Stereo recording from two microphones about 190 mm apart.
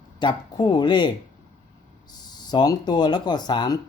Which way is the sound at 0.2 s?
20° left (ahead or behind).